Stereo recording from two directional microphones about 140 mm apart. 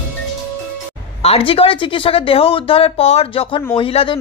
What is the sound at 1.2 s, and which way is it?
Speech, 40° left (ahead or behind).